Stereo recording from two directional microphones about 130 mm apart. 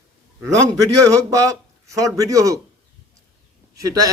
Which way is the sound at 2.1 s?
25° right (ahead or behind).